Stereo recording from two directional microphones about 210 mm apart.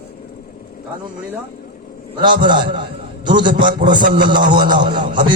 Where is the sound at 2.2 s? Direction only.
20° right (ahead or behind).